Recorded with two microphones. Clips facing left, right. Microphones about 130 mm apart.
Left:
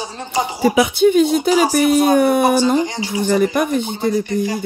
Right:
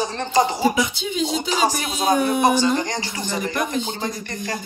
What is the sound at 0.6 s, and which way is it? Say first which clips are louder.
Speech: left 8 dB; 70° left (ahead or behind).